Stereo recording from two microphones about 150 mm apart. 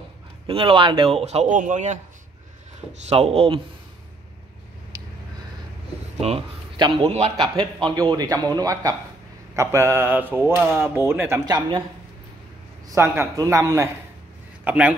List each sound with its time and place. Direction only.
0.5 s a man's voice: 35° right (ahead or behind); by 2.0 s 50° right (ahead or behind)
3.1 s speech: 40° right (ahead or behind)
6.2 s a man's voice: 35° right (ahead or behind)
7.1 s a man's voice: 45° right (ahead or behind)
7.9 s speech: 30° right (ahead or behind)
11.4 s speech: 25° right (ahead or behind)
12.8 s a man's voice: 15° right (ahead or behind)